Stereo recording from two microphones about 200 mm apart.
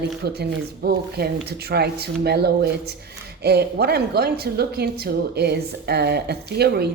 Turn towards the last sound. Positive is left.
turn(degrees=-55)  # may be behind; listen again after turning